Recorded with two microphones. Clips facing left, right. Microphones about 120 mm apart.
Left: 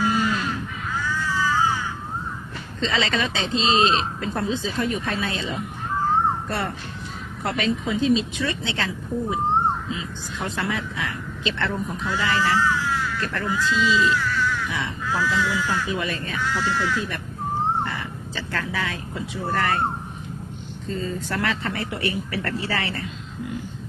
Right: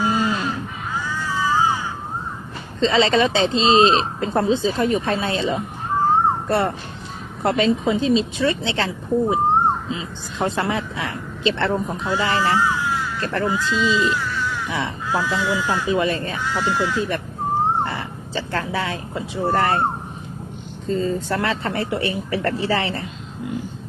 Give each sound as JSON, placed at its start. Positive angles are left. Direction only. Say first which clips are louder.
{"t": 0.0, "sound": "crow", "louder": "right 2 dB", "side_deg": -25}
{"t": 2.8, "sound": "speech", "louder": "right 7 dB", "side_deg": -30}
{"t": 12.0, "sound": "a sound", "louder": "right 2 dB", "side_deg": -25}
{"t": 13.2, "sound": "speech", "louder": "right 6 dB", "side_deg": -35}
{"t": 20.9, "sound": "speech", "louder": "right 6 dB", "side_deg": -30}